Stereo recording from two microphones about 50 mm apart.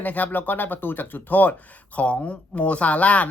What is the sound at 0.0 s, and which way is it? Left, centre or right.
Speech, left.